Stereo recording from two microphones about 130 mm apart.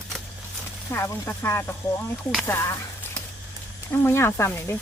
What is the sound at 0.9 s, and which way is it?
Speech, 20° left (ahead or behind).